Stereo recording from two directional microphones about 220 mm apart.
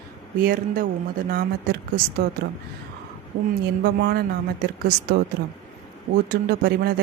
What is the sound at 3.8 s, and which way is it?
Speech, 45° right (ahead or behind).